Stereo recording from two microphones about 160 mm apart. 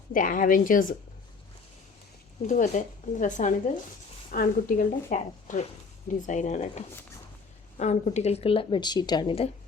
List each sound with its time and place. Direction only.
0.1 s a woman's voice: 55° left (ahead or behind)
2.5 s a woman's voice: 50° left (ahead or behind); by 9.5 s 35° left (ahead or behind)